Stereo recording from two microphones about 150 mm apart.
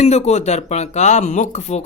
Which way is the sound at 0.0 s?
45° left (ahead or behind).